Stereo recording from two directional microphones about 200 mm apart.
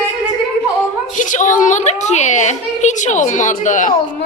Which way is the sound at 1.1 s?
40° left (ahead or behind).